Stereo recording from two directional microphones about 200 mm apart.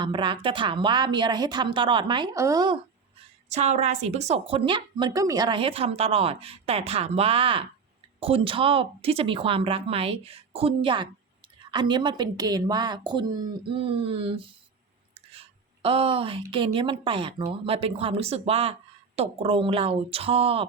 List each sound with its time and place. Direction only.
0.0 s a woman's voice: 25° right (ahead or behind)
3.5 s a woman's voice: 30° right (ahead or behind)
15.1 s a sound: 30° right (ahead or behind)
16.5 s a woman's voice: 25° right (ahead or behind)